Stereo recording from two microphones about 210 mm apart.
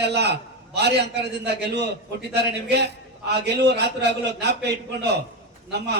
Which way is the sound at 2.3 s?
50° right (ahead or behind).